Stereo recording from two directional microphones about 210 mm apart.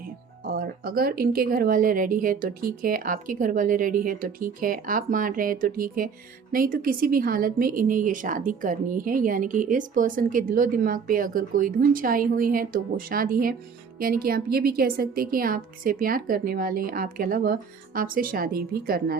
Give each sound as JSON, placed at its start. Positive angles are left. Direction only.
{"t": 0.4, "sound": "a woman's voice", "side_deg": -45}